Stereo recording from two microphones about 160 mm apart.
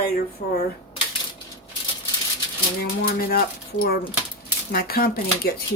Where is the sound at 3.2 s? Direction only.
70° left (ahead or behind).